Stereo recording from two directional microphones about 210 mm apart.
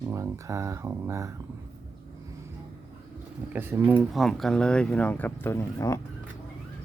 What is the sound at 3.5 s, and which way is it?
Speech, 10° right (ahead or behind).